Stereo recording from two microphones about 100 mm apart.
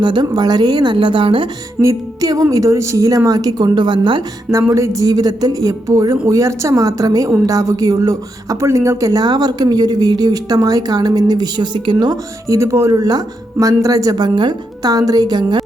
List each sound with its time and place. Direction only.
0.0 s a woman's voice: 50° right (ahead or behind)
1.8 s speech: 35° right (ahead or behind); by 4.2 s 55° right (ahead or behind)
4.7 s speech: 30° right (ahead or behind)
12.5 s speech: 30° right (ahead or behind); by 15.6 s 45° right (ahead or behind)